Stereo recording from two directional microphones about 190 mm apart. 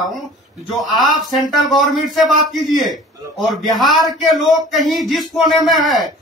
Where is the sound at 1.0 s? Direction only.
Centre (ahead or behind).